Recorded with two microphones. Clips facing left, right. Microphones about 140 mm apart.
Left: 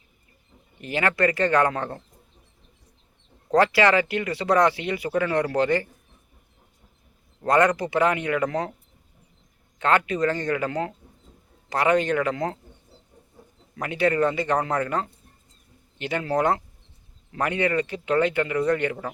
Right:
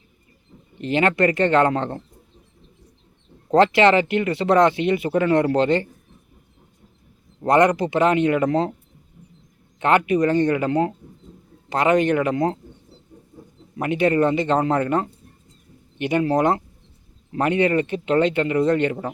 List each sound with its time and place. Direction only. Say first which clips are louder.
0.8 s speech: right 4 dB; 25° right (ahead or behind)
3.5 s speech: right 4 dB; 20° right (ahead or behind)
7.4 s speech: right 4 dB; 25° right (ahead or behind)
9.8 s speech: right 4 dB; 20° right (ahead or behind)
13.7 s speech: right 4 dB; 20° right (ahead or behind)